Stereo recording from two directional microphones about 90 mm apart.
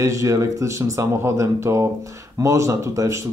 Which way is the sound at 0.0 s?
35° right (ahead or behind).